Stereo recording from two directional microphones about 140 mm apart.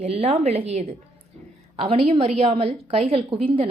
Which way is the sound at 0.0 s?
50° right (ahead or behind).